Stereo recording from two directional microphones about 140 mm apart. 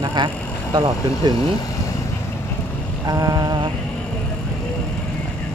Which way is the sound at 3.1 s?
25° right (ahead or behind).